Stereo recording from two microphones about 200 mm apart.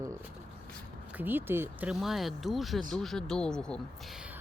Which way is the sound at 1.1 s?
10° right (ahead or behind).